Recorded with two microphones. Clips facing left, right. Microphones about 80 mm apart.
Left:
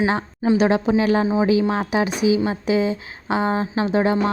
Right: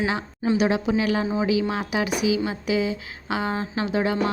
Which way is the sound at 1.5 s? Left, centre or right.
Left.